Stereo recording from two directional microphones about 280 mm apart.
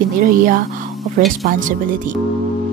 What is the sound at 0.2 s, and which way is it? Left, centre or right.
Speech, right.